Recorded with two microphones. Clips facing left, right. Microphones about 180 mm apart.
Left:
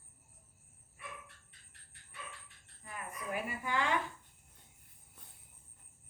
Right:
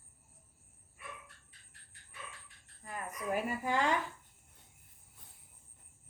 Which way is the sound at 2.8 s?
40° right (ahead or behind).